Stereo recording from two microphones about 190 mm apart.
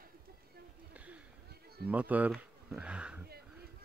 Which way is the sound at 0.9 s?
5° right (ahead or behind).